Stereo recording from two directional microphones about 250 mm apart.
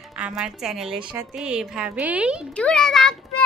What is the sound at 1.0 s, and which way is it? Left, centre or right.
Speech, centre.